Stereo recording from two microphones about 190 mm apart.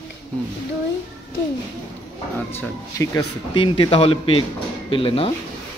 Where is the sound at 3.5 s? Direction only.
25° left (ahead or behind).